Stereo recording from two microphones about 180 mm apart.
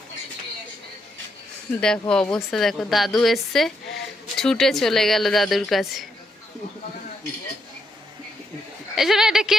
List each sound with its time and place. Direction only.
1.8 s a woman's voice: 5° left (ahead or behind)
9.0 s a woman's voice: centre (ahead or behind)